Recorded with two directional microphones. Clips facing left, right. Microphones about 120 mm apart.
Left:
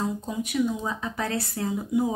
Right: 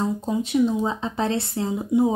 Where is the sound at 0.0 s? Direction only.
30° right (ahead or behind).